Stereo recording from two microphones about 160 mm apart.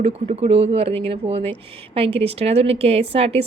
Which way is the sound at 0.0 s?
40° right (ahead or behind).